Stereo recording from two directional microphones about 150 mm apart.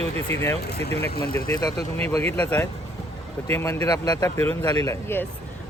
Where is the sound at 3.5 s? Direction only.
25° left (ahead or behind).